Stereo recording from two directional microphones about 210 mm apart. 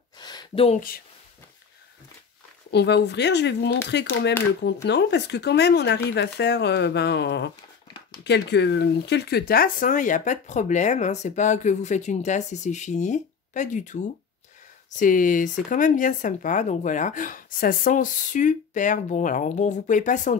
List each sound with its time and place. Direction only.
0.2 s a sound: 20° left (ahead or behind)
2.7 s speech: 55° left (ahead or behind); by 13.9 s 35° left (ahead or behind)
15.0 s speech: 40° left (ahead or behind)